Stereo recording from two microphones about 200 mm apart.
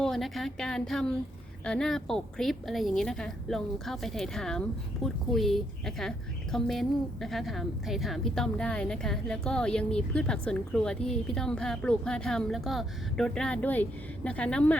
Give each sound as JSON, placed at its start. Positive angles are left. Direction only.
{"t": 0.0, "sound": "a woman's voice", "side_deg": 0}